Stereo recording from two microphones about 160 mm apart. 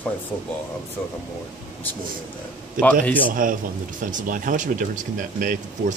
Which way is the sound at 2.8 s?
55° right (ahead or behind).